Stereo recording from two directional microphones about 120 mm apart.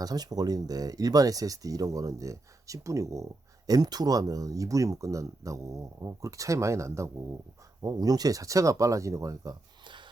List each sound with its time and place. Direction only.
0.0 s speech: 35° right (ahead or behind)